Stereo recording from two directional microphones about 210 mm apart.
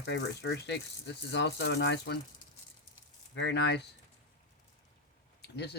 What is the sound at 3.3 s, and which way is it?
Speech, 55° left (ahead or behind).